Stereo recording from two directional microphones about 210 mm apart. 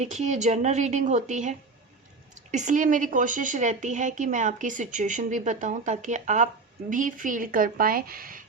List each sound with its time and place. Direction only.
0.0 s a woman's voice: 35° right (ahead or behind)